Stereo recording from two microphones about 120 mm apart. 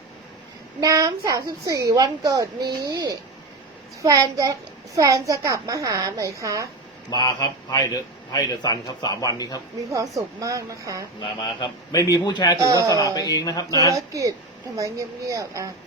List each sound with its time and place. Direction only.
0.8 s a woman's voice: 30° right (ahead or behind)
7.1 s a man's voice: 35° left (ahead or behind)
9.9 s a woman's voice: 25° right (ahead or behind)
11.2 s a man's voice: 40° left (ahead or behind)
12.5 s a woman's voice: 25° right (ahead or behind)
13.1 s a man's voice: 35° left (ahead or behind)
13.9 s a woman's voice: 25° right (ahead or behind)